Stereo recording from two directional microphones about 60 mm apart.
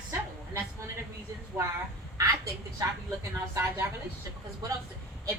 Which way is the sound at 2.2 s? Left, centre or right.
Right.